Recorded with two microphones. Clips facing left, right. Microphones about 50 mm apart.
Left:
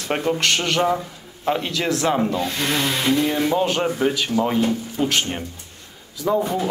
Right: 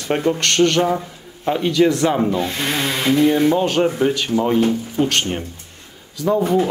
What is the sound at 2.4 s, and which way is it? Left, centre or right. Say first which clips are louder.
Speech: right 1 dB; right.